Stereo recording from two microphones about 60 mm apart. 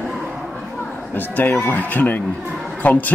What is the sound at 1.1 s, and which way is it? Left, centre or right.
Speech, left.